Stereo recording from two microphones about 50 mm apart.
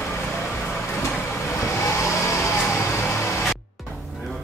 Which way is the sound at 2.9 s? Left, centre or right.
Left.